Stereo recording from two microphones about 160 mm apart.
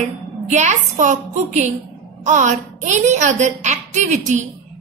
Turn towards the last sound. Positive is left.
turn(degrees=-50)  # may be behind; listen again after turning